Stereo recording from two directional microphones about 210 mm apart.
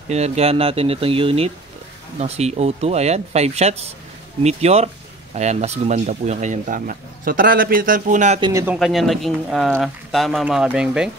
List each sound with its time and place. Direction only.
0.1 s speech: 30° right (ahead or behind)
8.4 s speech: 20° right (ahead or behind)
8.6 s speech: centre (ahead or behind)